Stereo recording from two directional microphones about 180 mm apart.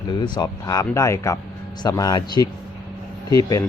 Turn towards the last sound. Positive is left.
turn(degrees=20)  # may be behind; listen again after turning